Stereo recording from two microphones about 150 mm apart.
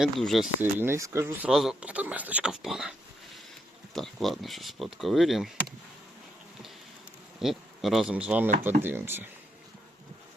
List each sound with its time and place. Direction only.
0.0 s speech: centre (ahead or behind)
0.6 s speech: 15° right (ahead or behind)
1.5 s speech: 5° right (ahead or behind)
3.9 s speech: centre (ahead or behind)
7.4 s speech: centre (ahead or behind)